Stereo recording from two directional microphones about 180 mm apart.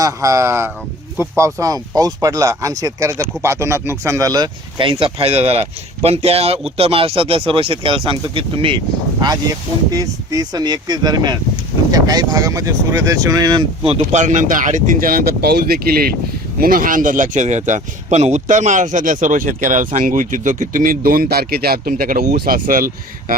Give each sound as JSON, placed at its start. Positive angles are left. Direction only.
{"t": 0.0, "sound": "speech", "side_deg": -15}
{"t": 13.9, "sound": "speech", "side_deg": -40}